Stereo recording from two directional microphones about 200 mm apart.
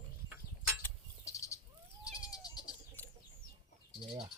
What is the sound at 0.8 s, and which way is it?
Bird, 15° left (ahead or behind).